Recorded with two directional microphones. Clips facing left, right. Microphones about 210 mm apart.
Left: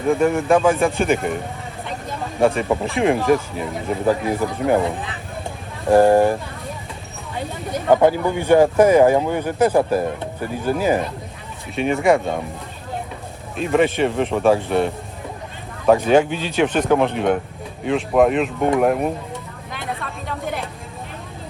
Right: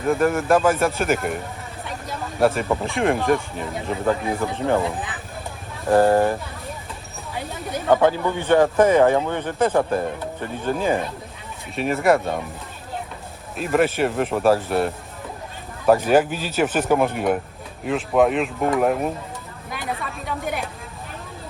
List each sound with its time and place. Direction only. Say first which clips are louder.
0.1 s speech: left 2 dB; centre (ahead or behind)
2.4 s speech: left 2 dB; 5° right (ahead or behind)
4.4 s speech: left 3 dB; 15° left (ahead or behind)
5.9 s speech: left 3 dB; 15° left (ahead or behind)
7.9 s speech: left 3 dB; 15° left (ahead or behind)
11.7 s speech: left 2 dB; centre (ahead or behind)
13.6 s speech: left 2 dB; 5° right (ahead or behind)
19.7 s vehicle: even; centre (ahead or behind)